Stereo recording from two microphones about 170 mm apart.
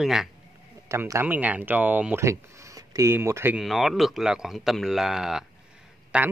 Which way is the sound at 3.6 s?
Centre (ahead or behind).